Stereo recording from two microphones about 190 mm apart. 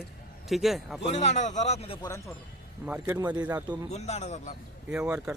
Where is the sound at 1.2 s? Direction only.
35° left (ahead or behind).